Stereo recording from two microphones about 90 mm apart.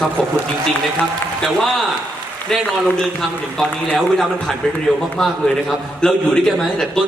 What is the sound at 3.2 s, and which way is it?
A man's voice, 5° left (ahead or behind).